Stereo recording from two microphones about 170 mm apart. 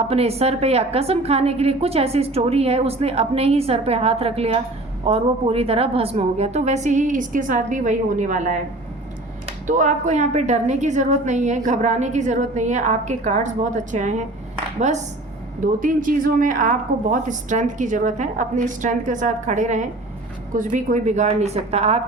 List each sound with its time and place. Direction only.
0.0 s a woman's voice: 35° right (ahead or behind)
9.6 s a woman's voice: 45° right (ahead or behind)
15.6 s a woman's voice: 55° right (ahead or behind); by 22.0 s 35° right (ahead or behind)